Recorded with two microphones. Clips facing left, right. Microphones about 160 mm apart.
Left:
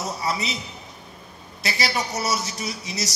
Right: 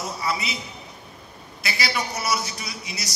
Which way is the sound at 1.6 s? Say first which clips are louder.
Left 2 dB; 35° left (ahead or behind).